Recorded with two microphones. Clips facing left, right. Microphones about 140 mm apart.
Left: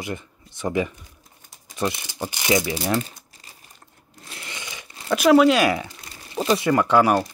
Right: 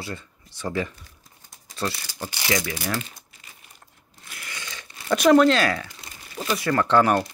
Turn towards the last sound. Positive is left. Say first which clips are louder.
# left 1 dB
turn(degrees=10)  # may be behind; listen again after turning